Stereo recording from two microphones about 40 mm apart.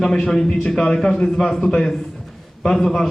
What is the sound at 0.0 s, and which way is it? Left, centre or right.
A man's voice, centre.